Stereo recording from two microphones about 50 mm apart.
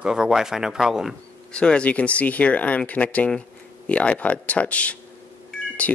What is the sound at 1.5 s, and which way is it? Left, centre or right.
Speech, centre.